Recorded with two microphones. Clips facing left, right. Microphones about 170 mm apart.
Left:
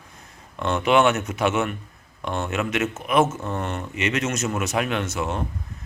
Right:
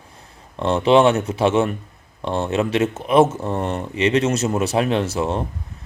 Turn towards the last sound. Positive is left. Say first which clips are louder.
# right 5 dB
turn(degrees=-30)  # may be behind; listen again after turning